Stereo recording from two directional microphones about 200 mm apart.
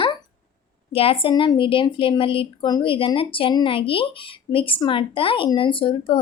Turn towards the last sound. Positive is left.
turn(degrees=25)  # may be behind; listen again after turning